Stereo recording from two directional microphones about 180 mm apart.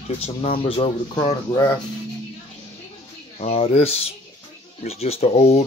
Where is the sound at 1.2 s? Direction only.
20° left (ahead or behind).